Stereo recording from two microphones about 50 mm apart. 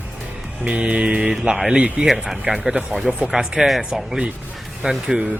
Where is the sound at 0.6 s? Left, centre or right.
Right.